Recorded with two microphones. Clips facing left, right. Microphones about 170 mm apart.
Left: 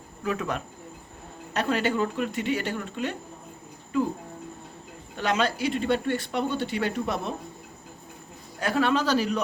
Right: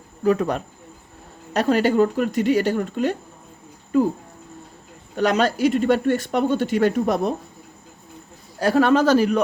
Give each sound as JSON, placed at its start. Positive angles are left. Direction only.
{"t": 0.3, "sound": "speech", "side_deg": -40}
{"t": 5.1, "sound": "speech", "side_deg": -40}
{"t": 8.5, "sound": "speech", "side_deg": -40}